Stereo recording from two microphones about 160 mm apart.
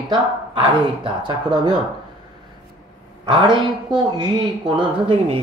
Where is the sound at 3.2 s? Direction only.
30° right (ahead or behind).